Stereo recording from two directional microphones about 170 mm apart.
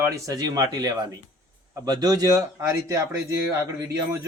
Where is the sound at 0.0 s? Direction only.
20° right (ahead or behind).